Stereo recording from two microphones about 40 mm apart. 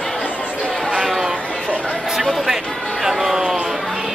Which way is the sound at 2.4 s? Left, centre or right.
Centre.